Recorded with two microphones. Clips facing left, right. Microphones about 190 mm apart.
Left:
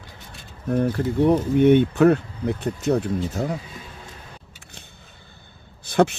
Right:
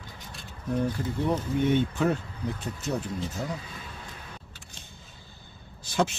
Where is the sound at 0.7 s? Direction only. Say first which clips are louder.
Left 7 dB; 65° left (ahead or behind).